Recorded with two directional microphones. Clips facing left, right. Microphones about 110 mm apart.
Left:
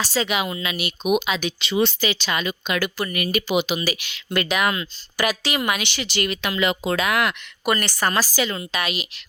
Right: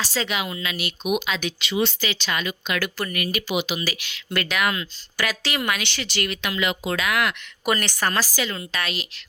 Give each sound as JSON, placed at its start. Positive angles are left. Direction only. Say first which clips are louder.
{"t": 0.0, "sound": "a woman's voice", "louder": "left 3 dB", "side_deg": 15}
{"t": 0.4, "sound": "speech", "louder": "left 3 dB", "side_deg": 25}
{"t": 0.7, "sound": "a woman's voice", "louder": "left 4 dB", "side_deg": 15}
{"t": 1.6, "sound": "speech", "louder": "left 3 dB", "side_deg": 35}
{"t": 2.0, "sound": "a woman's voice", "louder": "left 3 dB", "side_deg": 15}
{"t": 2.7, "sound": "a woman's voice", "louder": "left 2 dB", "side_deg": 10}
{"t": 3.3, "sound": "speech", "louder": "left 6 dB", "side_deg": 30}
{"t": 7.6, "sound": "a woman's voice", "louder": "left 1 dB", "side_deg": 0}